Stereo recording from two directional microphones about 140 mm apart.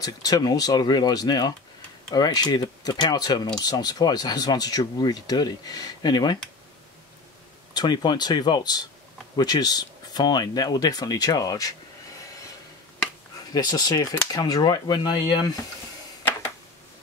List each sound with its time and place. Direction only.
0.0 s speech: 25° left (ahead or behind)
7.7 s speech: 30° left (ahead or behind)
13.5 s speech: 30° left (ahead or behind)